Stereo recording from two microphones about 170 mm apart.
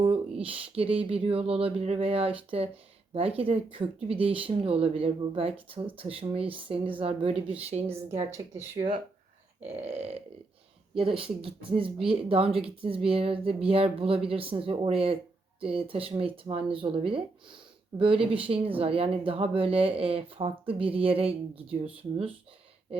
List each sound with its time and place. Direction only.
0.0 s speech: 35° right (ahead or behind)
8.3 s speech: 15° right (ahead or behind)
10.0 s speech: 35° right (ahead or behind)